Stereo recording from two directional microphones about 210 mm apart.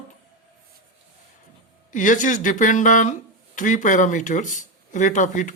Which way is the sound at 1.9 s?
35° left (ahead or behind).